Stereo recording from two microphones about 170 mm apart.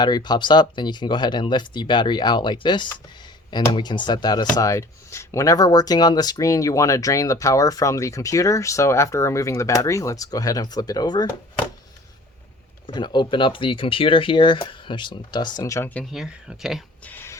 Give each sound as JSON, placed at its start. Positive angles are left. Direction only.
{"t": 0.0, "sound": "speech", "side_deg": 25}
{"t": 12.9, "sound": "speech", "side_deg": 25}
{"t": 16.1, "sound": "speech", "side_deg": -5}
{"t": 17.1, "sound": "a sound", "side_deg": 10}